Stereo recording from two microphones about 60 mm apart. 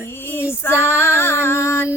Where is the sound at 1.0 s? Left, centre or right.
Left.